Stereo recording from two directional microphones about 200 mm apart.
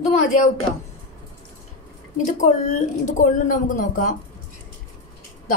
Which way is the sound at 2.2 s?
40° left (ahead or behind).